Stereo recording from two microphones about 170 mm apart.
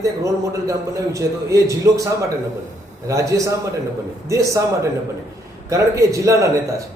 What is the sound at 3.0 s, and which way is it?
A man's voice, 20° right (ahead or behind).